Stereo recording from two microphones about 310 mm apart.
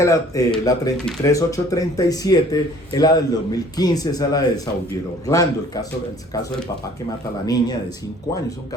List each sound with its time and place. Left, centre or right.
0.0 s speech: centre